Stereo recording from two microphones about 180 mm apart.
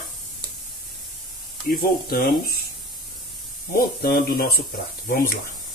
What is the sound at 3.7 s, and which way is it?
Speech, 55° left (ahead or behind).